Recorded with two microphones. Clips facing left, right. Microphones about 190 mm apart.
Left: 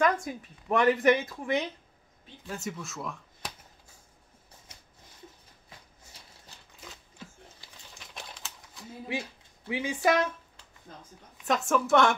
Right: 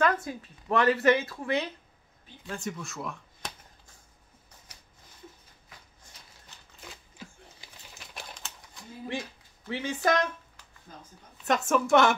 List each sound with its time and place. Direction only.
0.0 s speech: 15° left (ahead or behind)
2.4 s speech: 5° left (ahead or behind)
4.7 s a sound: 25° left (ahead or behind)
6.8 s a sound: 5° right (ahead or behind)
7.9 s typewriter: 5° right (ahead or behind)
9.7 s speech: 10° left (ahead or behind)
11.4 s a woman's voice: centre (ahead or behind)